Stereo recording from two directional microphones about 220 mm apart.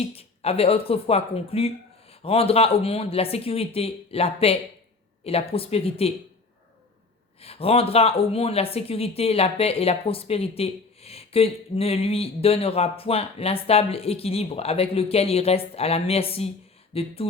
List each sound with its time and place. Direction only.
0.0 s speech: 25° left (ahead or behind)
7.4 s speech: 25° left (ahead or behind)